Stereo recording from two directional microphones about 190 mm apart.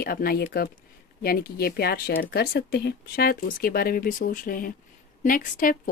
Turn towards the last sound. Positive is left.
turn(degrees=45)  # may be behind; listen again after turning